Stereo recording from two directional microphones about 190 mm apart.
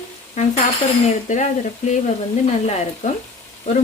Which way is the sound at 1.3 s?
40° left (ahead or behind).